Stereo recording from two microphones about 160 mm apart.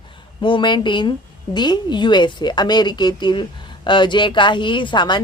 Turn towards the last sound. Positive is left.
turn(degrees=30)  # may be behind; listen again after turning